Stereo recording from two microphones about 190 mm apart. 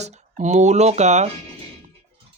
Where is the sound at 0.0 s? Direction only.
35° right (ahead or behind).